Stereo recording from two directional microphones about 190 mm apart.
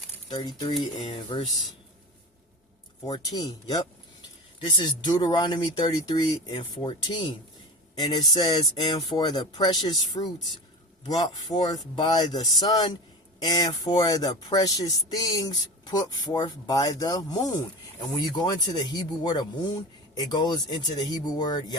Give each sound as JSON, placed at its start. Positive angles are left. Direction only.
{"t": 0.3, "sound": "speech", "side_deg": 20}
{"t": 3.1, "sound": "speech", "side_deg": 20}